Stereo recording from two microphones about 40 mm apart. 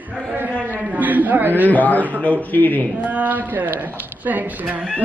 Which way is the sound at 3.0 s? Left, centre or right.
Right.